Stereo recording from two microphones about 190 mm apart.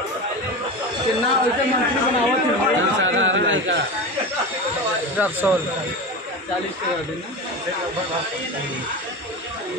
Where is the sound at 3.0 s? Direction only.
90° right.